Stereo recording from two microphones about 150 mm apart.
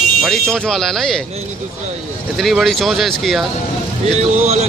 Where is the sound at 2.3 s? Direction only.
Centre (ahead or behind).